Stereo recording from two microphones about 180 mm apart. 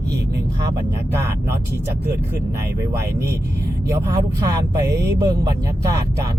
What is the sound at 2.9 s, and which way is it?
Speech, 15° right (ahead or behind).